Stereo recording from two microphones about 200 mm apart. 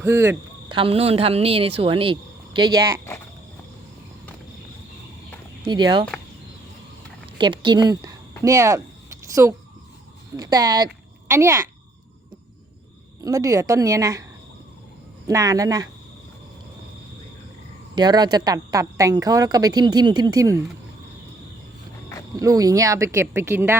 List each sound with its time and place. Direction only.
0.0 s speech: 15° right (ahead or behind)
0.7 s speech: 25° right (ahead or behind)
5.6 s speech: 20° right (ahead or behind)
7.3 s speech: 25° right (ahead or behind)
8.4 s a sound: 15° right (ahead or behind)
10.3 s speech: 20° right (ahead or behind)
13.2 s speech: 15° right (ahead or behind)
15.3 s speech: 15° right (ahead or behind)
17.9 s speech: 20° right (ahead or behind)
22.4 s speech: 15° right (ahead or behind)